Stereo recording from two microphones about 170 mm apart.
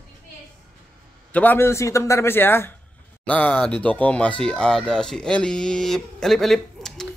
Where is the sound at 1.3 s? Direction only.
10° left (ahead or behind).